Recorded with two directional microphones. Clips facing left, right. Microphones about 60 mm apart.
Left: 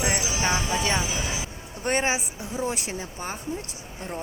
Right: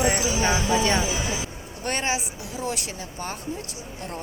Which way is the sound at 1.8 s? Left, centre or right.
Left.